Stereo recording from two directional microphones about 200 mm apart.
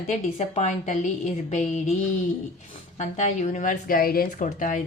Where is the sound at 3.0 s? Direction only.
35° left (ahead or behind).